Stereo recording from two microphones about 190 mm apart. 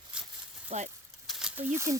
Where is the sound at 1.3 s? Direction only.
5° right (ahead or behind).